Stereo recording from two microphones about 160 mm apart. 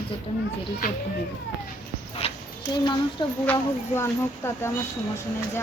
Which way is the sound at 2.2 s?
40° left (ahead or behind).